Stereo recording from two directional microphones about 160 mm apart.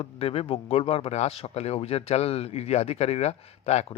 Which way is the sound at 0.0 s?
40° left (ahead or behind).